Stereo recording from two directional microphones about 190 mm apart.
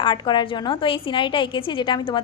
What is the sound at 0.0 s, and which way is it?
A woman's voice, 25° left (ahead or behind).